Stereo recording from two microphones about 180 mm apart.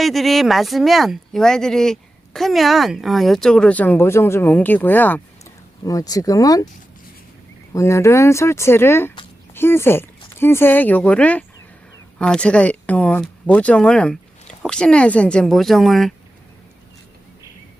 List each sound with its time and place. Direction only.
0.0 s speech: centre (ahead or behind); by 6.7 s 20° left (ahead or behind)
7.7 s speech: 15° left (ahead or behind)